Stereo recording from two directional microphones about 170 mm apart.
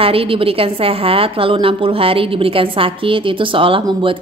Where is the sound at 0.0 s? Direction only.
35° right (ahead or behind).